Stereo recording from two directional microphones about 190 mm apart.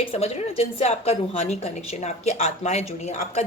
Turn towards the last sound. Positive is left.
turn(degrees=35)  # may be behind; listen again after turning